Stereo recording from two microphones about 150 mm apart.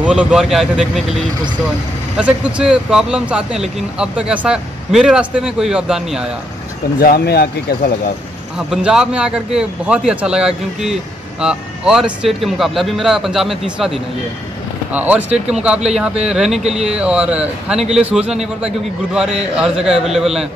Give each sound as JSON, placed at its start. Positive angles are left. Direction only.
{"t": 0.0, "sound": "speech", "side_deg": -10}
{"t": 2.1, "sound": "speech", "side_deg": -10}
{"t": 7.0, "sound": "speech", "side_deg": 90}
{"t": 8.5, "sound": "speech", "side_deg": -5}
{"t": 15.0, "sound": "speech", "side_deg": -10}